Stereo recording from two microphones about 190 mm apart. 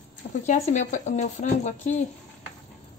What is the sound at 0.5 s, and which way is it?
A woman's voice, 40° left (ahead or behind).